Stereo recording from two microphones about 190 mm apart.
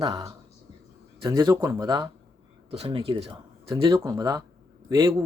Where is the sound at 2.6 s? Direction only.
30° right (ahead or behind).